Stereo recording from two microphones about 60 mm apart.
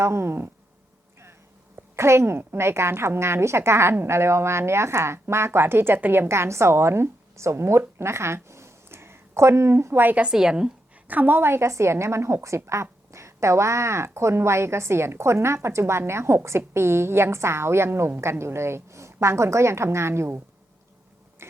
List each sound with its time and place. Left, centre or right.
0.0 s a woman's voice: right
2.0 s a woman's voice: right
6.2 s speech: right
10.2 s a woman's voice: centre
11.1 s a woman's voice: right